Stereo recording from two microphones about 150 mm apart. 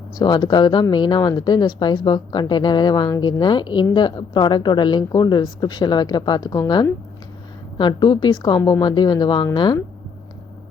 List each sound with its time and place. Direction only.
0.2 s speech: 30° left (ahead or behind)